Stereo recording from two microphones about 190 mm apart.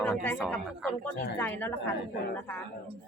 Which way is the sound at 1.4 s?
10° left (ahead or behind).